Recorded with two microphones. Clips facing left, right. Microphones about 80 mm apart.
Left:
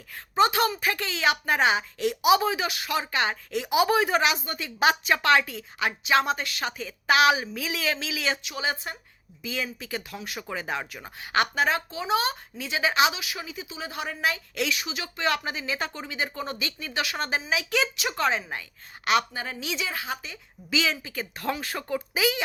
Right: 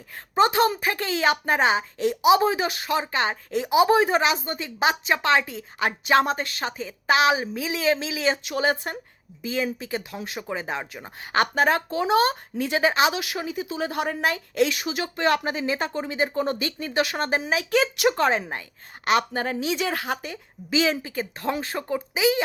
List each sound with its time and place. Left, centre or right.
0.3 s a woman's voice: right
19.9 s a woman's voice: right